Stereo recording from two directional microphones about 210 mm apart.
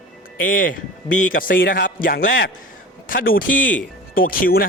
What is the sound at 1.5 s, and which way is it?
A man's voice, 55° left (ahead or behind).